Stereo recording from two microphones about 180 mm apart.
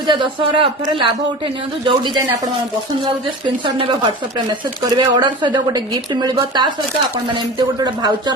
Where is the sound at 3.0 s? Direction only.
30° right (ahead or behind).